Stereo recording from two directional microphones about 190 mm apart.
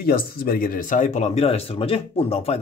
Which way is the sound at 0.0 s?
50° left (ahead or behind).